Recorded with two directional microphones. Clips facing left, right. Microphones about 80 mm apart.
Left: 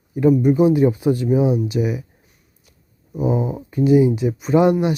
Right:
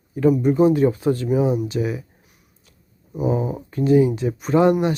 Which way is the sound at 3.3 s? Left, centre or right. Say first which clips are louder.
Left 1 dB; centre.